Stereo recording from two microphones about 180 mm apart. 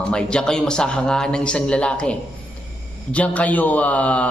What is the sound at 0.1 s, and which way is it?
A man's voice, 5° left (ahead or behind).